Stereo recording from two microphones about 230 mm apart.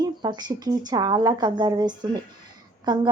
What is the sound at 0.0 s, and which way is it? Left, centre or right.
A woman's voice, centre.